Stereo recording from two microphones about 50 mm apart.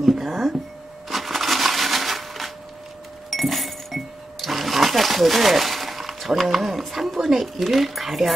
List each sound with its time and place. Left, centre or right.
0.0 s a sound: centre
1.0 s crushing: centre
3.3 s chink: centre
6.8 s speech: centre